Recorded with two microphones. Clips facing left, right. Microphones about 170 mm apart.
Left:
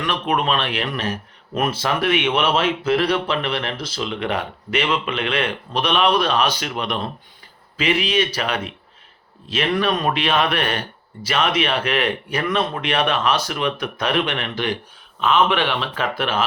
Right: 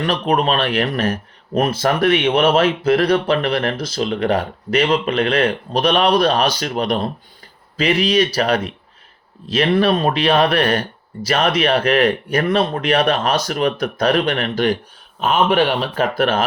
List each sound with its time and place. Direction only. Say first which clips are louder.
0.0 s a man's voice: right 4 dB; 35° right (ahead or behind)